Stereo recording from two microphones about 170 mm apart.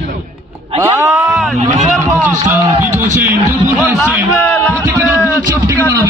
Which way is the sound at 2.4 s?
20° right (ahead or behind).